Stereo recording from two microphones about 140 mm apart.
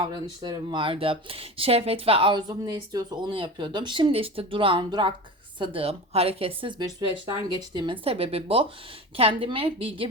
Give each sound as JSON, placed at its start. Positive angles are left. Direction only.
{"t": 0.0, "sound": "speech", "side_deg": -30}